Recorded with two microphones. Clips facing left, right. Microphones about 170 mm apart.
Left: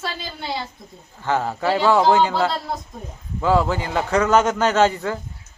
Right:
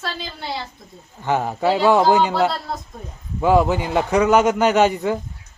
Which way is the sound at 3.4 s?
15° right (ahead or behind).